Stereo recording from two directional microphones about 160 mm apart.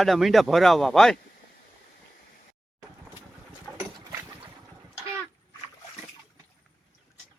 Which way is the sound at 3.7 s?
20° right (ahead or behind).